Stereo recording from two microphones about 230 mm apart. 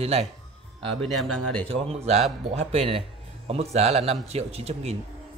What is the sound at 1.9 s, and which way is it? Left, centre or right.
A man's voice, right.